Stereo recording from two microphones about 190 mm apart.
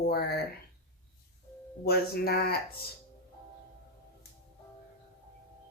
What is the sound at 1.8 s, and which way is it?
Speech, 55° left (ahead or behind).